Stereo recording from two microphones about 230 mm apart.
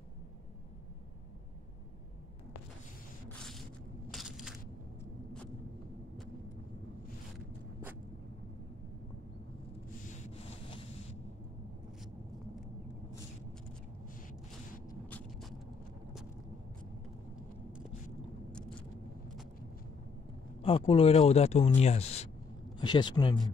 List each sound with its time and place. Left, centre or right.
3.3 s a sound: centre
4.1 s crushing: centre
10.0 s boat: left
14.9 s vehicle: centre
18.5 s vehicle: centre
20.6 s speech: left